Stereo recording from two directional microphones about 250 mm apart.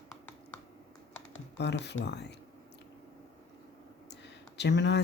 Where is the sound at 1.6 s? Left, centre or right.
Left.